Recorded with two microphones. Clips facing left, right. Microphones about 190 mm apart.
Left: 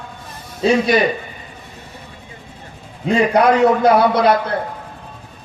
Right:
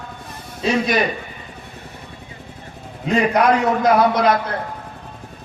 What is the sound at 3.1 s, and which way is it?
A man's voice, 30° left (ahead or behind).